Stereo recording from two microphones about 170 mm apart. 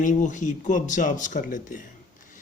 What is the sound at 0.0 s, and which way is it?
Speech, 50° left (ahead or behind).